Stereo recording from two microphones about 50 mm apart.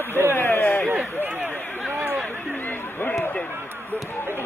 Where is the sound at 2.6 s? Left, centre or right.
Left.